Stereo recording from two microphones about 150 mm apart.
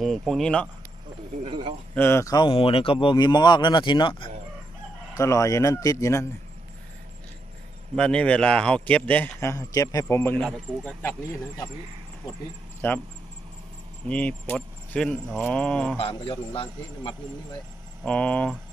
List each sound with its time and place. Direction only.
0.3 s speech: 5° left (ahead or behind)
1.4 s speech: 35° right (ahead or behind)
2.0 s a man's voice: 15° left (ahead or behind)
2.4 s speech: 40° left (ahead or behind)
5.1 s a man's voice: 20° left (ahead or behind)
7.9 s speech: 5° left (ahead or behind)
12.8 s speech: 15° left (ahead or behind)
14.0 s speech: 10° left (ahead or behind)
16.0 s speech: 40° left (ahead or behind)
18.0 s speech: 10° left (ahead or behind)